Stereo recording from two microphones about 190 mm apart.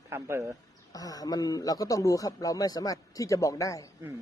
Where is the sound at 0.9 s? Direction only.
20° left (ahead or behind).